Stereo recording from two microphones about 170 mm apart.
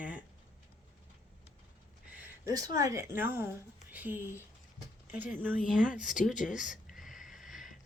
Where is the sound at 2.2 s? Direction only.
20° right (ahead or behind).